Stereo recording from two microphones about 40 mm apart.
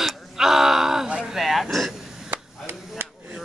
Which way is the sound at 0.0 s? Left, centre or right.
Centre.